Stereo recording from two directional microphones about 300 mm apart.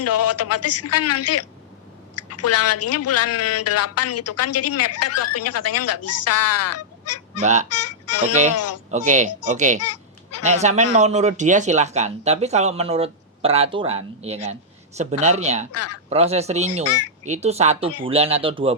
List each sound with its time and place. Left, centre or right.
0.0 s a woman's voice: left
7.4 s speech: right
7.7 s a woman's voice: left
8.9 s speech: right
9.8 s honk: left
10.4 s speech: right
15.7 s a woman's voice: left
16.0 s speech: right